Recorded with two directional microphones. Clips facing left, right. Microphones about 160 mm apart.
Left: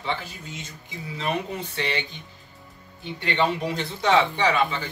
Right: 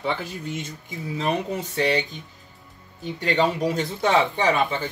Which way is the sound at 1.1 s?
40° right (ahead or behind).